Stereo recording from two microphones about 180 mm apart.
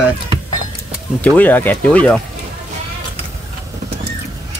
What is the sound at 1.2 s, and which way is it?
Speech, 10° left (ahead or behind).